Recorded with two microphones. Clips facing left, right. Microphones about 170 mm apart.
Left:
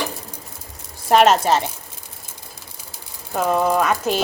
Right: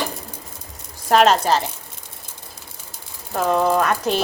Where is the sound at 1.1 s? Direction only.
5° left (ahead or behind).